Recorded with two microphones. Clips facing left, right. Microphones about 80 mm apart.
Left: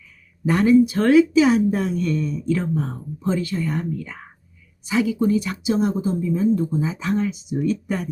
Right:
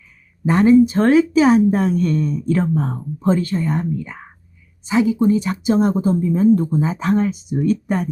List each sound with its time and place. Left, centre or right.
0.4 s speech: right
3.7 s speech: right